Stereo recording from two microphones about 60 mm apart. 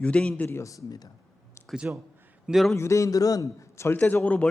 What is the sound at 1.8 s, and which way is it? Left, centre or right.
Speech, right.